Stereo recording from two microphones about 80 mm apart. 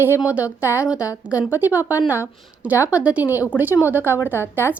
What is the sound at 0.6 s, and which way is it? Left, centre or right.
Speech, left.